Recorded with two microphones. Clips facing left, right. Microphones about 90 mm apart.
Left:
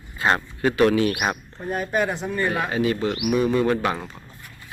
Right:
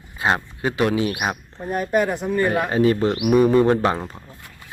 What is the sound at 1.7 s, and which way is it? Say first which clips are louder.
Speech: right 3 dB; 5° right (ahead or behind).